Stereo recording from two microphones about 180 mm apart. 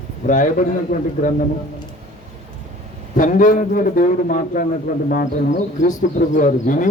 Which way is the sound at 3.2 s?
45° left (ahead or behind).